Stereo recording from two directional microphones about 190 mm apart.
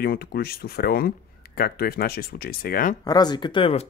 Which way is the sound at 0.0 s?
50° left (ahead or behind).